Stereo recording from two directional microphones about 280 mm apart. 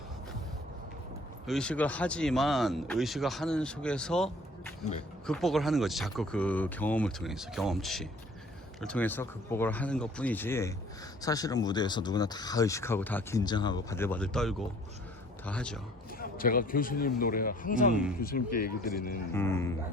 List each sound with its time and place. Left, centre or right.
1.5 s speech: centre
16.1 s a man's voice: left
19.3 s speech: centre